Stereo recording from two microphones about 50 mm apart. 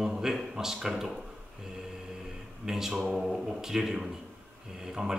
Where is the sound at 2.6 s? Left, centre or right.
Centre.